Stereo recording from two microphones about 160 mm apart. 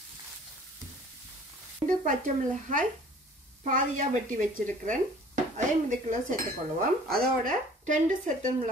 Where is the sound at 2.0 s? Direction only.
55° right (ahead or behind).